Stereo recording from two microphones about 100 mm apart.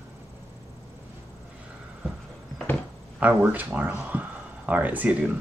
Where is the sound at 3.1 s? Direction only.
15° right (ahead or behind).